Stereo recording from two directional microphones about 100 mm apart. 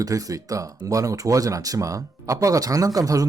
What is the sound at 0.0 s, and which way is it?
Speech, 35° right (ahead or behind).